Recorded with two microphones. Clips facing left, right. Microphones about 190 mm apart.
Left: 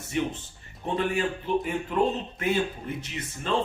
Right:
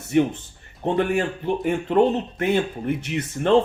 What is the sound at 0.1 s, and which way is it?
Speech, 55° right (ahead or behind).